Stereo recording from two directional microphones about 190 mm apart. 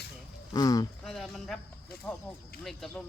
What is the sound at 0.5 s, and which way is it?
Speech, 20° left (ahead or behind).